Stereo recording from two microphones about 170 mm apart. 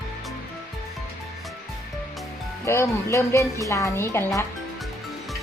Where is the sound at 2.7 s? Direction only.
15° left (ahead or behind).